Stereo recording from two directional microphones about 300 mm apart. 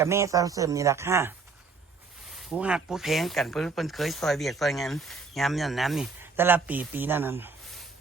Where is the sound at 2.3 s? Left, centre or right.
Centre.